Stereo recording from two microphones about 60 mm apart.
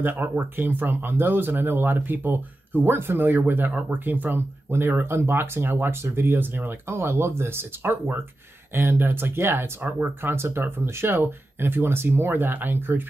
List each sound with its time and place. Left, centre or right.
0.0 s speech: right